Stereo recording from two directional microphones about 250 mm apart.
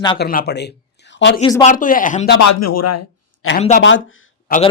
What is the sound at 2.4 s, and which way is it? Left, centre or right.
A man's voice, left.